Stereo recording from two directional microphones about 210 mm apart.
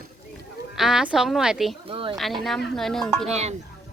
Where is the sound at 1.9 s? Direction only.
25° right (ahead or behind).